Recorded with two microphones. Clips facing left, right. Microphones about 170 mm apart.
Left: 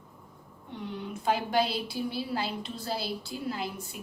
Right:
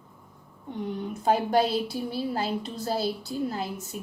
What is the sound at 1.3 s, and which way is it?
A woman's voice, 45° right (ahead or behind).